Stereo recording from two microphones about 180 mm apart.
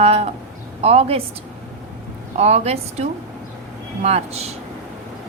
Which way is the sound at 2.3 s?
35° right (ahead or behind).